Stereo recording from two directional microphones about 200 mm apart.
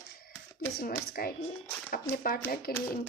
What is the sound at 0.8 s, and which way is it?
Speech, 50° left (ahead or behind).